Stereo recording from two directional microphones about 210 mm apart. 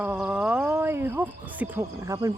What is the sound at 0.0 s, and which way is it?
Speech, 5° right (ahead or behind).